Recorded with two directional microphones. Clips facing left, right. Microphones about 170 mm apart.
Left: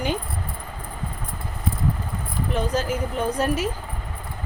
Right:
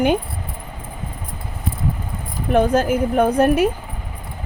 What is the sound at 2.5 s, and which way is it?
Speech, 55° right (ahead or behind).